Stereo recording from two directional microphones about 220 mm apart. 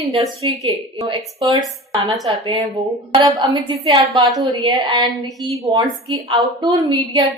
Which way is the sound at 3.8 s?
25° right (ahead or behind).